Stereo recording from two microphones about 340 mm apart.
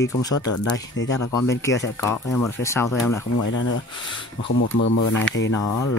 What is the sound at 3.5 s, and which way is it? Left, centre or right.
Music, left.